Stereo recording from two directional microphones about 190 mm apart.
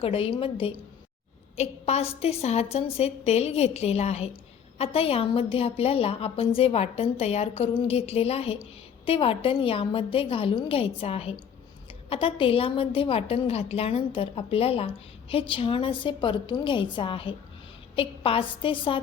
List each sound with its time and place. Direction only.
0.0 s a woman's voice: 30° left (ahead or behind)